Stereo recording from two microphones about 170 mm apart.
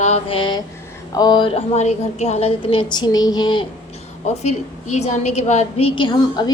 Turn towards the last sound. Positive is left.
turn(degrees=25)  # may be behind; listen again after turning